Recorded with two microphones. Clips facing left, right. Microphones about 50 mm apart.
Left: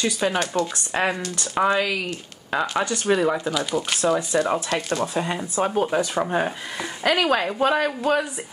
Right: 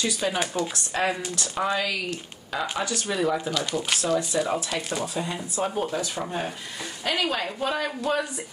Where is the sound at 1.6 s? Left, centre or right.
Centre.